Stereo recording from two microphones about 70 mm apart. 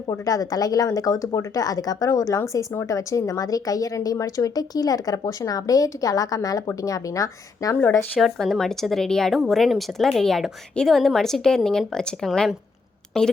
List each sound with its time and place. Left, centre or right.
0.1 s speech: left
8.2 s speech: centre